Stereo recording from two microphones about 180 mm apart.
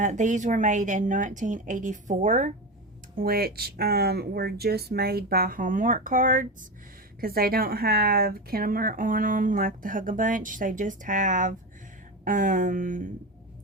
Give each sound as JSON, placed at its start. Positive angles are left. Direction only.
{"t": 0.0, "sound": "speech", "side_deg": -45}
{"t": 3.2, "sound": "speech", "side_deg": -55}